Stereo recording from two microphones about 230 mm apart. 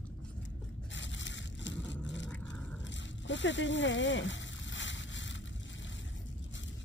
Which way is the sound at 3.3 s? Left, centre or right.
Left.